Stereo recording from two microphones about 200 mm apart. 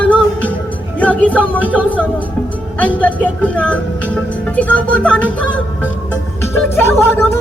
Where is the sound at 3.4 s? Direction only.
5° left (ahead or behind).